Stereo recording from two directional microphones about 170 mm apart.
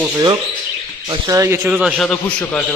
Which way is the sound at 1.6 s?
Centre (ahead or behind).